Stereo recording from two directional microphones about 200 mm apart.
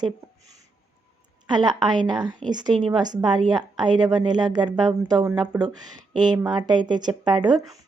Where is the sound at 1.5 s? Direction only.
20° right (ahead or behind).